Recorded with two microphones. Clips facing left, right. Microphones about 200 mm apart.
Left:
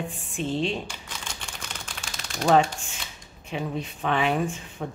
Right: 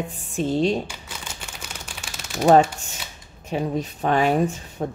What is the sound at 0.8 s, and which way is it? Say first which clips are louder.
Typewriter: right 2 dB; 5° right (ahead or behind).